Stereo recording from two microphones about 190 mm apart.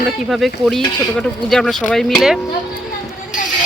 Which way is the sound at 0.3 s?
Centre (ahead or behind).